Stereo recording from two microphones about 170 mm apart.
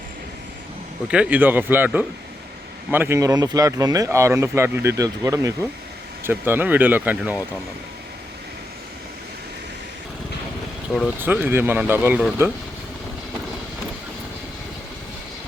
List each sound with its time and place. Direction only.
1.0 s speech: 5° right (ahead or behind)
11.0 s speech: 10° right (ahead or behind)